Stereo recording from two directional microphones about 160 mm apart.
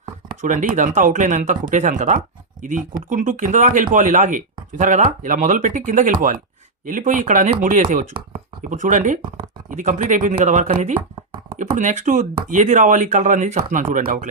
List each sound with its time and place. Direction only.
0.4 s speech: 50° right (ahead or behind)
11.4 s a sound: 50° right (ahead or behind)
12.5 s speech: 50° right (ahead or behind)